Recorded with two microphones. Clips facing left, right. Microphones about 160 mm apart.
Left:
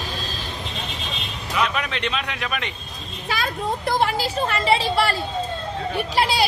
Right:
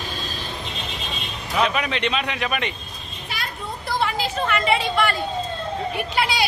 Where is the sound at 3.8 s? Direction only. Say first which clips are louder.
Left 1 dB; 40° left (ahead or behind).